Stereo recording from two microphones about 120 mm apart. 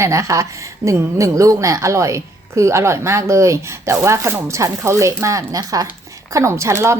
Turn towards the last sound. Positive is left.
turn(degrees=-20)  # may be behind; listen again after turning